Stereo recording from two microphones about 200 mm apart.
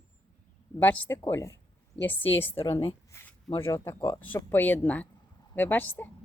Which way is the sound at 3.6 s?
15° left (ahead or behind).